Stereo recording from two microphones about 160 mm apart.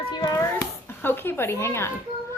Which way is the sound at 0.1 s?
25° left (ahead or behind).